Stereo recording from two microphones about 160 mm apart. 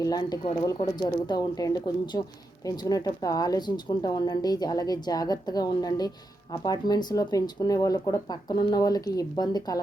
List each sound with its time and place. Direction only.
0.0 s a woman's voice: 25° left (ahead or behind)